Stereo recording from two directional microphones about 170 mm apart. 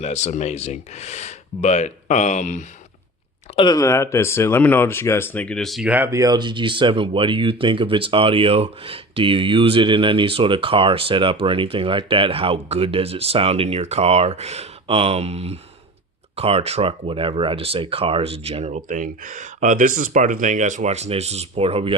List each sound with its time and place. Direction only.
0.0 s speech: 40° left (ahead or behind)
3.5 s speech: 25° left (ahead or behind); by 21.9 s 35° right (ahead or behind)